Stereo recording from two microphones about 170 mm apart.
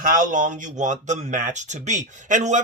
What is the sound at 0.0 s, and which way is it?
Speech, 50° right (ahead or behind).